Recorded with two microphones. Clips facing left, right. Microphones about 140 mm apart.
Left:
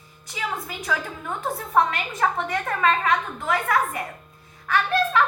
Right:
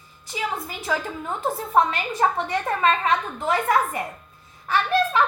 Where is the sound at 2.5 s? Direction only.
20° right (ahead or behind).